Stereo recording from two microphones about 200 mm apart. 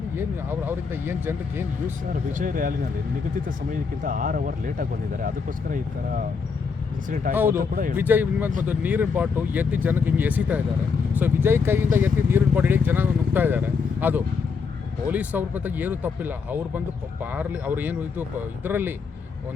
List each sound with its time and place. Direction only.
0.2 s speech: 10° right (ahead or behind)
2.1 s speech: 40° right (ahead or behind)
7.3 s speech: 10° right (ahead or behind)
7.6 s speech: 40° right (ahead or behind)
7.9 s speech: 10° right (ahead or behind)